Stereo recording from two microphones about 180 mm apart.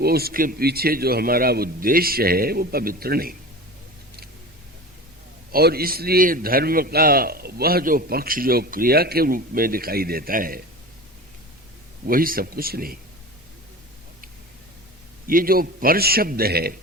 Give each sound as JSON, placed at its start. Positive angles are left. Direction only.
{"t": 0.0, "sound": "a man's voice", "side_deg": -60}
{"t": 5.5, "sound": "a man's voice", "side_deg": -60}
{"t": 12.0, "sound": "a man's voice", "side_deg": -55}
{"t": 15.3, "sound": "a man's voice", "side_deg": -55}